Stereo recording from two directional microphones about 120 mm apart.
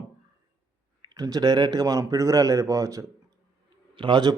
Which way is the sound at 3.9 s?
40° right (ahead or behind).